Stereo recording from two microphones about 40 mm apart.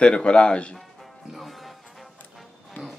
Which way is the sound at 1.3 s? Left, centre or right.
Centre.